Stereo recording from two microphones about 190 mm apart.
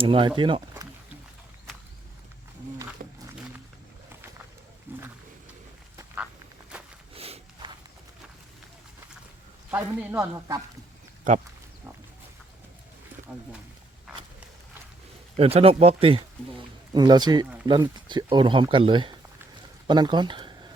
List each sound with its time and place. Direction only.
0.0 s speech: 30° right (ahead or behind)
3.0 s wild animals: 50° right (ahead or behind)
4.9 s roaring cats: 10° right (ahead or behind)
6.7 s walk: 5° right (ahead or behind)
7.1 s sniff: 30° right (ahead or behind)
9.6 s speech: 10° right (ahead or behind)
15.4 s speech: 30° right (ahead or behind)